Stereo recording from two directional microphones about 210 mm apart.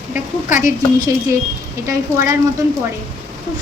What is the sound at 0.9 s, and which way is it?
Speech, 15° right (ahead or behind).